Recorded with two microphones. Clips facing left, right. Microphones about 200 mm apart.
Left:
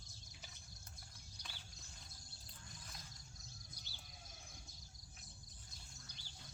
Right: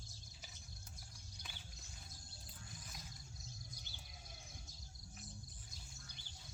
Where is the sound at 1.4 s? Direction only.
55° right (ahead or behind).